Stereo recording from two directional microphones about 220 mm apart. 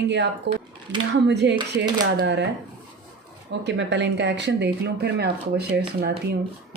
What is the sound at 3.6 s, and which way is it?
Speech, 55° right (ahead or behind).